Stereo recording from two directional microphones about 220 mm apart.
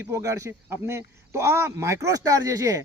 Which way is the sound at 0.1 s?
15° right (ahead or behind).